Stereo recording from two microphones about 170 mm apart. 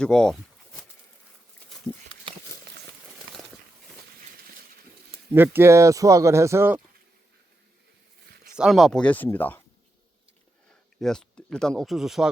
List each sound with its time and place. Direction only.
0.0 s a sound: 5° left (ahead or behind)
5.3 s speech: 15° right (ahead or behind)
8.5 s speech: centre (ahead or behind)
11.0 s speech: 5° left (ahead or behind)